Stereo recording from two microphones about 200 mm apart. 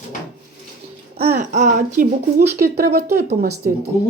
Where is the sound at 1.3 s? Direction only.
40° right (ahead or behind).